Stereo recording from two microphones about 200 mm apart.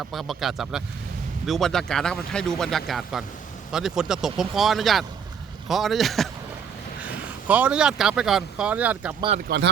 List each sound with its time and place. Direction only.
0.1 s speech: centre (ahead or behind)
7.4 s speech: 5° right (ahead or behind)
9.5 s speech: 50° right (ahead or behind)